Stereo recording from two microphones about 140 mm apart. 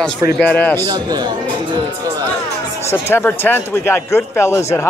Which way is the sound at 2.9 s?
15° left (ahead or behind).